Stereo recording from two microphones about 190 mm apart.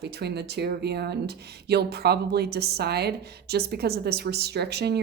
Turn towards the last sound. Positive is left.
turn(degrees=-60)  # may be behind; listen again after turning